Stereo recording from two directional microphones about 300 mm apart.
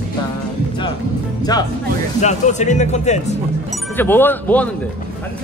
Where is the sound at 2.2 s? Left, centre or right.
Left.